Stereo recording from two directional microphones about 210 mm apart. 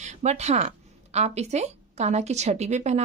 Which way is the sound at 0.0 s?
35° right (ahead or behind).